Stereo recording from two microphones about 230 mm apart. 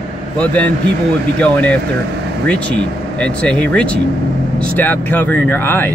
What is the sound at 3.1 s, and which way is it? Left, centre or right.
Speech, centre.